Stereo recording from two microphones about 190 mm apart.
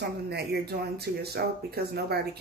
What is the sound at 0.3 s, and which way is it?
A woman's voice, 60° right (ahead or behind).